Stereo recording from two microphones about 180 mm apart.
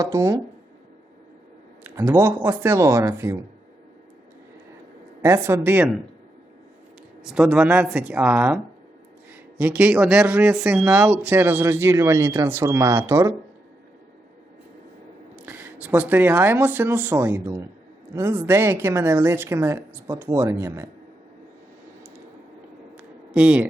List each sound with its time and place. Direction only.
0.0 s speech: 20° right (ahead or behind)
1.8 s speech: 15° right (ahead or behind)
5.2 s speech: 15° right (ahead or behind)
7.2 s speech: 5° right (ahead or behind)
15.4 s speech: 10° right (ahead or behind)
23.0 s a sound: 5° right (ahead or behind)